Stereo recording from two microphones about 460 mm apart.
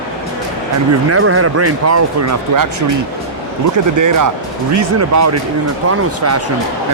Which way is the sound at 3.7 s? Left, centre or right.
Right.